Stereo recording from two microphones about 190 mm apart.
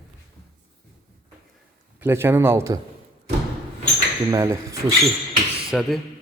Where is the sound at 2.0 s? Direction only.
10° right (ahead or behind).